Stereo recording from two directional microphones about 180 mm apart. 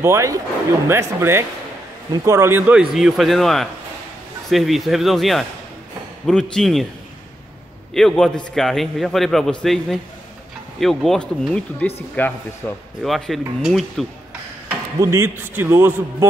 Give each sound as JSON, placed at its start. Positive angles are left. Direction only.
{"t": 0.0, "sound": "a man's voice", "side_deg": -15}
{"t": 7.9, "sound": "speech", "side_deg": 5}
{"t": 15.0, "sound": "a man's voice", "side_deg": -15}